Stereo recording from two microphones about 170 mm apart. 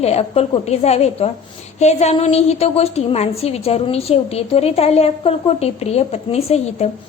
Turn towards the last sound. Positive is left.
turn(degrees=40)  # may be behind; listen again after turning